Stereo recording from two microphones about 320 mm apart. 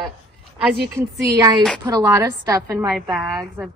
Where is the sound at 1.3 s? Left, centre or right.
Centre.